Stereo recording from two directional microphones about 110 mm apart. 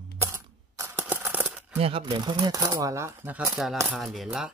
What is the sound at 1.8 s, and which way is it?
Speech, 55° right (ahead or behind).